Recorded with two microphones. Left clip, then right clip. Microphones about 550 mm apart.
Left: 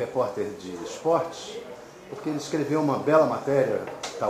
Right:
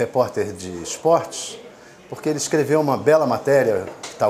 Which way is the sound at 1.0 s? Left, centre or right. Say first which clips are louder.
Right 7 dB; right.